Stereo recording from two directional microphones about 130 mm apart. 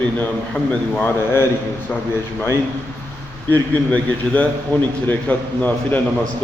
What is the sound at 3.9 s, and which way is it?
A man's voice, 10° left (ahead or behind).